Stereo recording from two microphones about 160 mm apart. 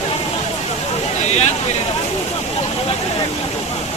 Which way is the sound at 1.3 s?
45° left (ahead or behind).